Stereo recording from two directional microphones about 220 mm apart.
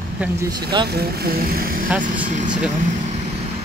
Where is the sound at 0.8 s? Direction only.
45° right (ahead or behind).